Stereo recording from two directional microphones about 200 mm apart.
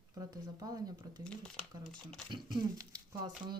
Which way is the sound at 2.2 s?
20° right (ahead or behind).